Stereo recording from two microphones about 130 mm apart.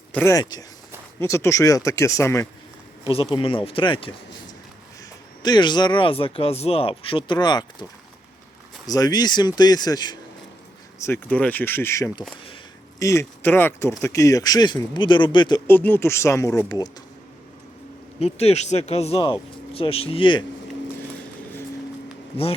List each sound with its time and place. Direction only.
0.3 s speech: 30° left (ahead or behind)
3.0 s speech: 45° left (ahead or behind)
5.4 s speech: 35° left (ahead or behind)
8.9 s speech: 30° left (ahead or behind)
11.0 s speech: 15° left (ahead or behind); by 15.6 s 35° left (ahead or behind)
15.6 s speech: 15° left (ahead or behind)
18.2 s speech: 55° left (ahead or behind)
22.3 s speech: 45° left (ahead or behind)